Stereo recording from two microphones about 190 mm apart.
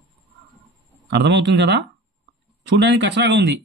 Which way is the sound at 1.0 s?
65° right (ahead or behind).